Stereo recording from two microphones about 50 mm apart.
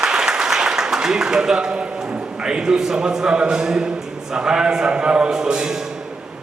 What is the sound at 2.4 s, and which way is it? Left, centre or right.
A man's voice, centre.